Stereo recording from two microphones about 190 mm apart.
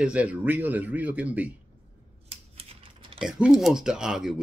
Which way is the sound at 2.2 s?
30° right (ahead or behind).